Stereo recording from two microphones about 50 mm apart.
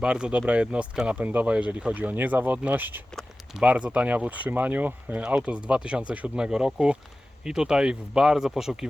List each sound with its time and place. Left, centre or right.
0.0 s speech: centre; by 3.0 s right
3.6 s speech: right
5.2 s speech: centre